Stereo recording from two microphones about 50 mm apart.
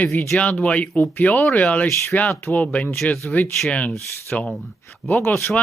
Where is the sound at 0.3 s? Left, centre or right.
Left.